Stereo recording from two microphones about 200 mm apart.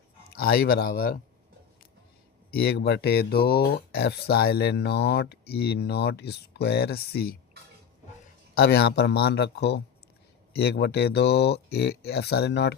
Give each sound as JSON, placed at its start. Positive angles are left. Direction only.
{"t": 0.3, "sound": "speech", "side_deg": 50}
{"t": 2.5, "sound": "speech", "side_deg": 50}
{"t": 8.5, "sound": "speech", "side_deg": 55}